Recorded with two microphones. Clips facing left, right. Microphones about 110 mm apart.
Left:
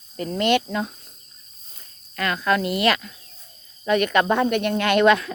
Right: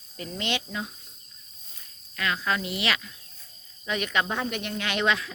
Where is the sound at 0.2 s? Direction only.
50° left (ahead or behind).